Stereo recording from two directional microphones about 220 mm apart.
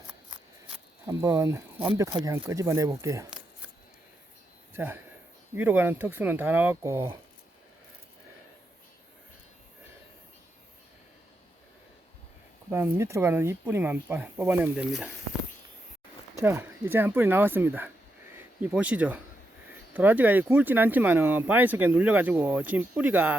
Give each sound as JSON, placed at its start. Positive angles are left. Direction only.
{"t": 1.0, "sound": "speech", "side_deg": -15}
{"t": 4.7, "sound": "speech", "side_deg": -10}
{"t": 12.7, "sound": "speech", "side_deg": -10}
{"t": 16.4, "sound": "speech", "side_deg": -10}